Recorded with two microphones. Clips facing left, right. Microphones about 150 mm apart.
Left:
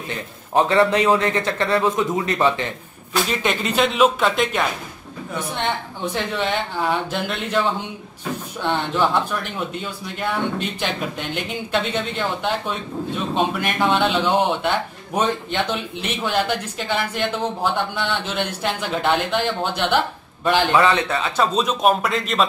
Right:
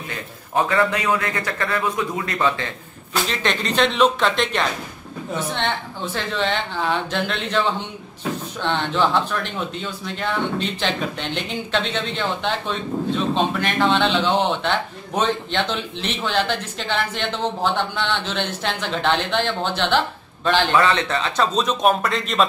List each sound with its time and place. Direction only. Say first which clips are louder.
0.6 s a man's voice: left 4 dB; 25° left (ahead or behind)
3.3 s a man's voice: left 1 dB; 5° left (ahead or behind)
6.1 s speech: even; 10° left (ahead or behind)
8.6 s a man's voice: even; 10° left (ahead or behind)